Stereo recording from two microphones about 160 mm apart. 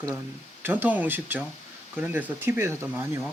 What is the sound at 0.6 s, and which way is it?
Speech, 10° right (ahead or behind).